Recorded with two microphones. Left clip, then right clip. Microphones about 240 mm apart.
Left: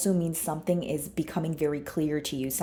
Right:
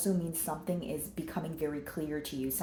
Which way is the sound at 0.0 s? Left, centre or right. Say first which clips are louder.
Left 6 dB; left.